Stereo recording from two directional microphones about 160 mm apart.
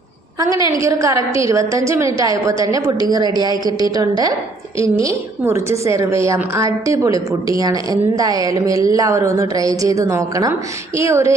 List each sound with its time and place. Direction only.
0.3 s a woman's voice: 20° right (ahead or behind)